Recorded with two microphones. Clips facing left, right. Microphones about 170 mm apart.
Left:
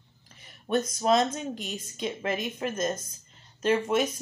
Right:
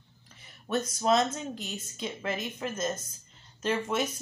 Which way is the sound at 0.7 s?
25° left (ahead or behind).